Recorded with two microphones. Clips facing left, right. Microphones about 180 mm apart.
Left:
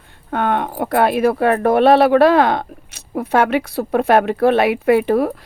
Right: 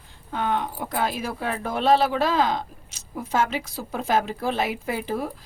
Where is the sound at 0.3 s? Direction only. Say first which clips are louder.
Left 7 dB; 60° left (ahead or behind).